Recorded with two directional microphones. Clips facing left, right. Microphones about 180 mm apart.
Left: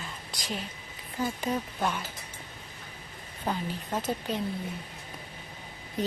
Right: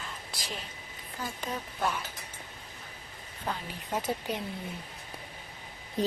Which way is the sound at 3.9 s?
10° right (ahead or behind).